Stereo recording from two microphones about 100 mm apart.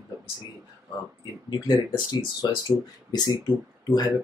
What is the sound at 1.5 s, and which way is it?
Speech, 45° left (ahead or behind).